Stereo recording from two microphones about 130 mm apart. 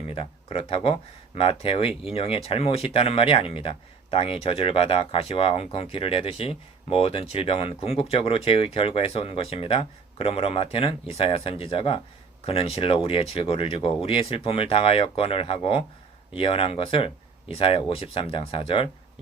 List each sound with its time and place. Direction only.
0.1 s speech: 45° left (ahead or behind)